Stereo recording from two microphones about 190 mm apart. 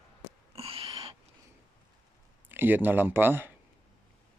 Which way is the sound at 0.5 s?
30° right (ahead or behind).